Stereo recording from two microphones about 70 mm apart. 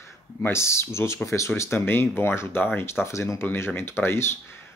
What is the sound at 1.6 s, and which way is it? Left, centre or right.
Speech, left.